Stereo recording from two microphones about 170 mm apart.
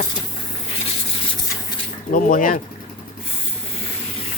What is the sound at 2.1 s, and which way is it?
Speech, 55° left (ahead or behind).